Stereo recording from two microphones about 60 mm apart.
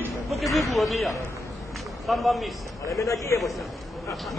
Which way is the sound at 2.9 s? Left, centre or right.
Left.